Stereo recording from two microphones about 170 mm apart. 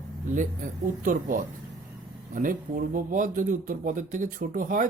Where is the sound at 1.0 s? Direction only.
50° right (ahead or behind).